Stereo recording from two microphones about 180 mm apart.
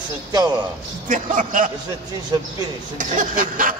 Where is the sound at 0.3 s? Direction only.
20° right (ahead or behind).